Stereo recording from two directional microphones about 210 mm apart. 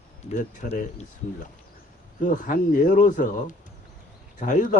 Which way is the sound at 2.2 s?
40° left (ahead or behind).